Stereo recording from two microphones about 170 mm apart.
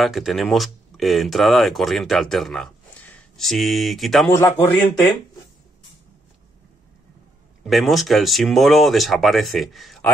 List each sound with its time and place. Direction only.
0.0 s speech: centre (ahead or behind)
4.3 s a man's voice: 15° left (ahead or behind)
7.6 s speech: centre (ahead or behind)